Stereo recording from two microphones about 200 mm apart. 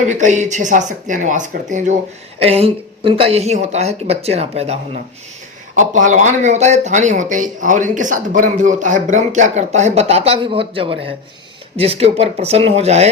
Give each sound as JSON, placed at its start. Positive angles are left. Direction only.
{"t": 0.1, "sound": "speech", "side_deg": -35}